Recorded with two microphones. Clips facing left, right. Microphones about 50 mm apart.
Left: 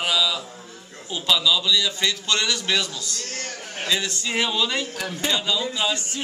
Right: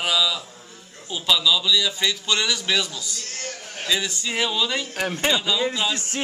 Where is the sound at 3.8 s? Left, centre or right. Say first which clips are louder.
Even; centre.